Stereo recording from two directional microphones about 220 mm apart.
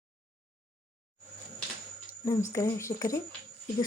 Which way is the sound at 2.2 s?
15° left (ahead or behind).